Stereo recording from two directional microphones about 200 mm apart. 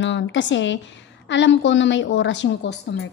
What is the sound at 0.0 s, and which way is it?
A woman's voice, 65° left (ahead or behind).